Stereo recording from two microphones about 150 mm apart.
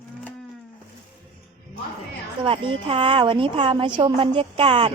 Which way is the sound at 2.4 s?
35° right (ahead or behind).